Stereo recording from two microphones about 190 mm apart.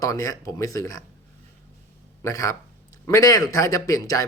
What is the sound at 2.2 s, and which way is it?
A man's voice, 15° left (ahead or behind).